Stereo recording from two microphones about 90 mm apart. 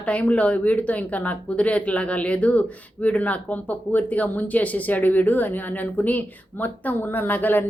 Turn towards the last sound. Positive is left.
turn(degrees=20)  # may be behind; listen again after turning